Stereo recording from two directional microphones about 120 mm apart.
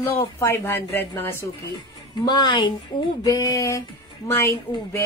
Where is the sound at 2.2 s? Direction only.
35° left (ahead or behind); by 4.6 s 20° left (ahead or behind).